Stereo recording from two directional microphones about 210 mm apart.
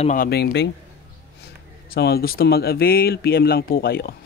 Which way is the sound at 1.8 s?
50° left (ahead or behind).